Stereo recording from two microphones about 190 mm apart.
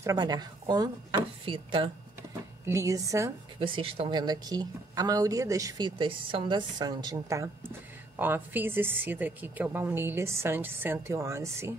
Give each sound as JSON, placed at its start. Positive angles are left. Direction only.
{"t": 0.0, "sound": "a woman's voice", "side_deg": -20}
{"t": 2.6, "sound": "a woman's voice", "side_deg": -15}
{"t": 3.5, "sound": "a woman's voice", "side_deg": -30}